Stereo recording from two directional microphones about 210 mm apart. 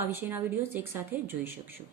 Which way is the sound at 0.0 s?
10° right (ahead or behind).